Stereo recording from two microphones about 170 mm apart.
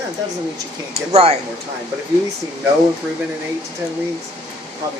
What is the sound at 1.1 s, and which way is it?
Speech, 35° right (ahead or behind).